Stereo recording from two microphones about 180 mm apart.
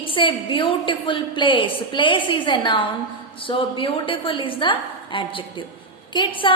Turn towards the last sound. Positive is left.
turn(degrees=25)  # may be behind; listen again after turning